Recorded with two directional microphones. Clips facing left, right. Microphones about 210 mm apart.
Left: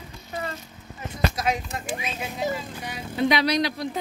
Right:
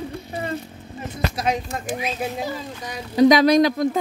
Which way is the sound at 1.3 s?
30° right (ahead or behind).